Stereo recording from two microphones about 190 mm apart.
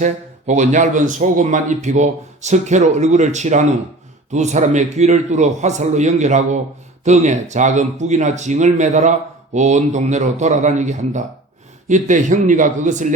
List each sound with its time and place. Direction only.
0.0 s speech: 40° right (ahead or behind)